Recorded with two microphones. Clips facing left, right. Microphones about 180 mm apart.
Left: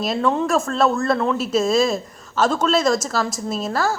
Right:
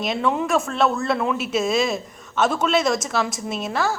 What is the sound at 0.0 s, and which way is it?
Speech, centre (ahead or behind).